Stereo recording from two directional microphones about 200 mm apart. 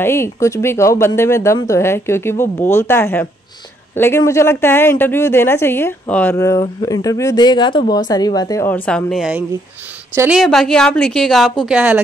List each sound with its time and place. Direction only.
0.0 s a woman's voice: 15° left (ahead or behind); by 12.0 s 5° right (ahead or behind)